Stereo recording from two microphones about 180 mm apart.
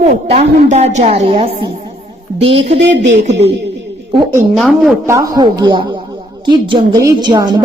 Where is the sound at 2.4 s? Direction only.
35° right (ahead or behind).